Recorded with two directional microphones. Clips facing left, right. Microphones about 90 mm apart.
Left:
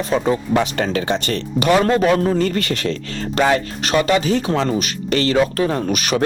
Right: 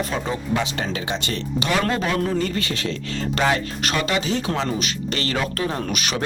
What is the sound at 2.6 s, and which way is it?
Speech, 60° left (ahead or behind).